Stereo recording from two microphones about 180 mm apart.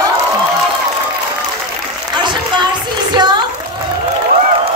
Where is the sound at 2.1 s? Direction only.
25° right (ahead or behind).